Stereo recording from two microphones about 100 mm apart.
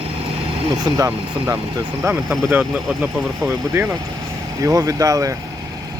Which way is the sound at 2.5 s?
15° right (ahead or behind).